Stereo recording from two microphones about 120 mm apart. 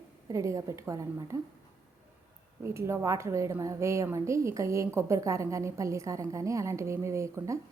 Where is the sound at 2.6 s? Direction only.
25° right (ahead or behind).